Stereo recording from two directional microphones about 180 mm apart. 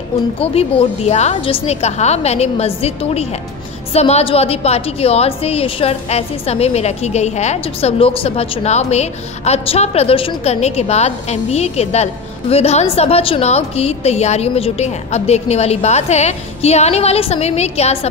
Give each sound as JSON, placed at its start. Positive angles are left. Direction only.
{"t": 0.4, "sound": "a woman's voice", "side_deg": 35}